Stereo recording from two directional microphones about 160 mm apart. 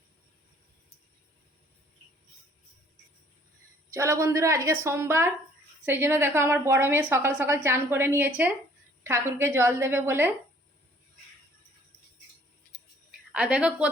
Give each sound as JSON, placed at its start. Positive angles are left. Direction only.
{"t": 3.9, "sound": "a woman's voice", "side_deg": -20}
{"t": 13.1, "sound": "a woman's voice", "side_deg": -5}